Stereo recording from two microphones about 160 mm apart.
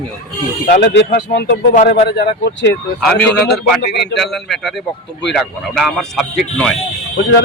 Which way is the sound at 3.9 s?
90° left.